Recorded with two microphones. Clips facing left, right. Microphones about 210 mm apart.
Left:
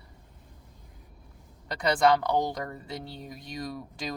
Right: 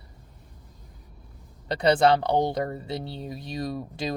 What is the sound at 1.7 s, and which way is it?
A woman's voice, 30° right (ahead or behind).